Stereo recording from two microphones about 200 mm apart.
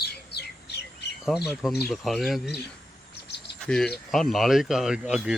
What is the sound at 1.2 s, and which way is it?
Speech, 5° right (ahead or behind).